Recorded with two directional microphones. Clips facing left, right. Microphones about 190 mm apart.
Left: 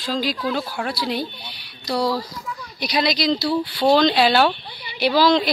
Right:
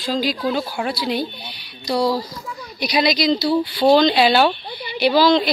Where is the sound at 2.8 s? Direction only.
5° right (ahead or behind).